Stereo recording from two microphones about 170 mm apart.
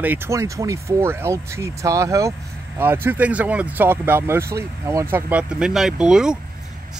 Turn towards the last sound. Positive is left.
turn(degrees=-5)  # may be behind; listen again after turning